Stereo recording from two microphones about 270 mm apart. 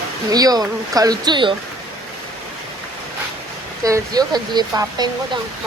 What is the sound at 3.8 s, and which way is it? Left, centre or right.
Speech, centre.